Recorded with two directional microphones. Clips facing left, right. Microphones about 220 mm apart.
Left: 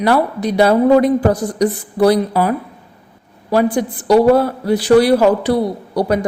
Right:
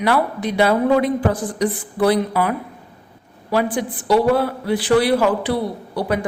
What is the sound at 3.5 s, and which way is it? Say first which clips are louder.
A woman's voice: left 5 dB; 40° left (ahead or behind).